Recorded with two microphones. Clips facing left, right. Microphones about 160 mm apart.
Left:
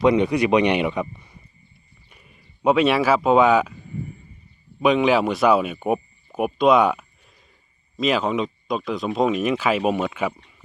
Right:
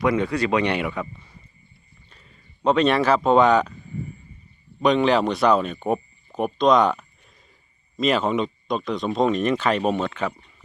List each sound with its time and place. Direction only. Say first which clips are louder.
0.0 s speech: left 4 dB; 20° left (ahead or behind)
4.8 s speech: left 1 dB; 5° left (ahead or behind)